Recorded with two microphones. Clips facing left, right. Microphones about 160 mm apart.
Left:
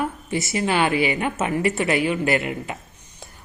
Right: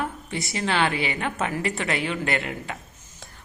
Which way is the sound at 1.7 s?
5° left (ahead or behind).